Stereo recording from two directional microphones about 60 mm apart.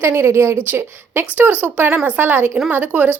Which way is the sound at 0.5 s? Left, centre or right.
Right.